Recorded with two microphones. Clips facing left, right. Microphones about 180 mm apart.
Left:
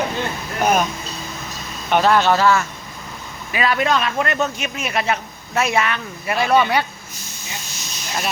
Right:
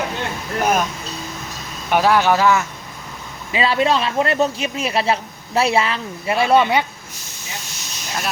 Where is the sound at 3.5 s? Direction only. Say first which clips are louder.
Right 2 dB; 25° right (ahead or behind).